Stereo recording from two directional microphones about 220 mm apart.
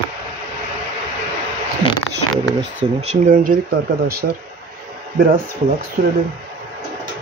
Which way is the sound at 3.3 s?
40° right (ahead or behind).